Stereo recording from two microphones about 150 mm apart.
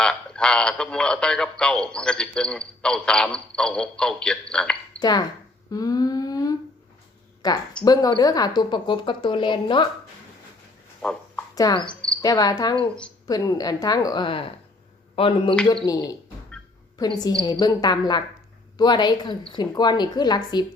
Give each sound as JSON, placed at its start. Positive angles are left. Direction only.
{"t": 0.0, "sound": "speech", "side_deg": 5}
{"t": 4.9, "sound": "speech", "side_deg": 25}
{"t": 5.7, "sound": "humming", "side_deg": 25}
{"t": 7.4, "sound": "a woman's voice", "side_deg": 25}
{"t": 11.0, "sound": "a sound", "side_deg": 5}
{"t": 11.5, "sound": "a woman's voice", "side_deg": 25}
{"t": 15.9, "sound": "a woman's voice", "side_deg": 25}